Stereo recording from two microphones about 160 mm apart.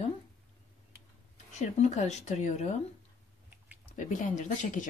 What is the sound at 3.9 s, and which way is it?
Speech, 55° left (ahead or behind).